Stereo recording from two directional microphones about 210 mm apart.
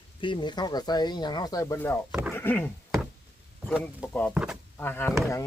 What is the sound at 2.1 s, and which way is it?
Speech, 5° right (ahead or behind).